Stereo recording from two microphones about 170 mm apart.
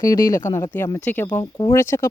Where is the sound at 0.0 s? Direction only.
20° left (ahead or behind).